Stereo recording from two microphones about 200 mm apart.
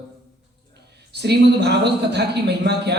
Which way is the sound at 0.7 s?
55° right (ahead or behind).